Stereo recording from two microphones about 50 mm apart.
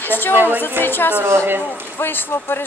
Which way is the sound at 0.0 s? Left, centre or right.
Left.